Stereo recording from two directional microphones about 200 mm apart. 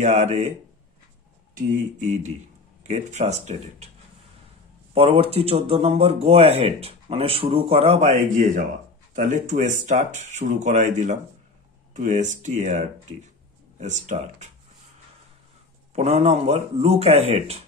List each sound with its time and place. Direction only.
0.0 s speech: 35° right (ahead or behind)
1.6 s speech: 35° right (ahead or behind)
4.9 s speech: 30° right (ahead or behind)
15.9 s speech: 30° right (ahead or behind)